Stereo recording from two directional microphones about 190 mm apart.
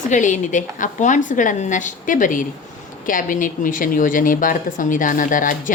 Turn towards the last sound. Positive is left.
turn(degrees=45)  # may be behind; listen again after turning